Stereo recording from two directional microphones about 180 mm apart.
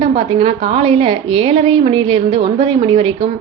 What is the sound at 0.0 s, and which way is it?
A woman's voice, 30° right (ahead or behind).